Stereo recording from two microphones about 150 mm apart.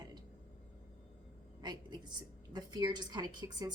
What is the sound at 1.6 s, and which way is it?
A woman's voice, 25° right (ahead or behind).